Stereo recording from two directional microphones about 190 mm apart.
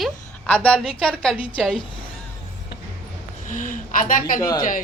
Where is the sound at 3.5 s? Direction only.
45° left (ahead or behind).